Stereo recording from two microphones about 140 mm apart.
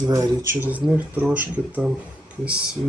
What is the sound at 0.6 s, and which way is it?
Speech, 10° right (ahead or behind).